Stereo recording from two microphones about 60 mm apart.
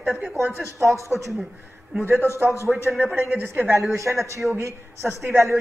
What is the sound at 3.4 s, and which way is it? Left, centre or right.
A woman's voice, right.